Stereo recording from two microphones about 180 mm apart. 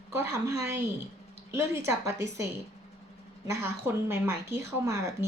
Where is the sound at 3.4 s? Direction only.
15° right (ahead or behind).